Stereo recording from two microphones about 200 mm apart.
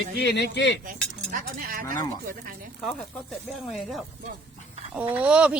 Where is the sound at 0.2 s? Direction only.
55° left (ahead or behind).